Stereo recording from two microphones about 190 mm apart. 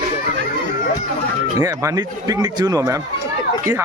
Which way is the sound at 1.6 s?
15° right (ahead or behind).